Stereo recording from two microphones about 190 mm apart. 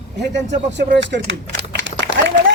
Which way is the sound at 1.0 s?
70° right (ahead or behind).